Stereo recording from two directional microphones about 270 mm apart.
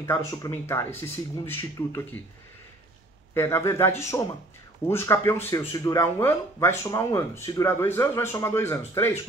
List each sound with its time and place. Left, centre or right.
0.0 s speech: centre
3.3 s speech: centre